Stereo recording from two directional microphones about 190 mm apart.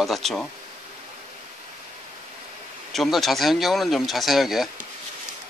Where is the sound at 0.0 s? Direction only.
Centre (ahead or behind).